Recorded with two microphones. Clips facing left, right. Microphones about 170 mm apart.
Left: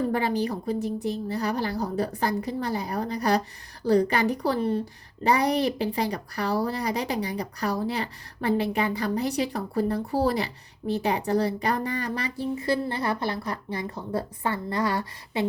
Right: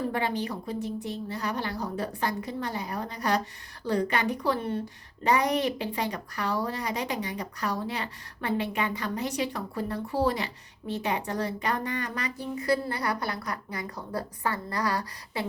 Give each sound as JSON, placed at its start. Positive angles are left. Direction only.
{"t": 0.1, "sound": "a woman's voice", "side_deg": 40}